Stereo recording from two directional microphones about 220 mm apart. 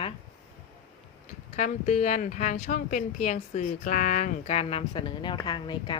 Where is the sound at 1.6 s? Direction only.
35° left (ahead or behind).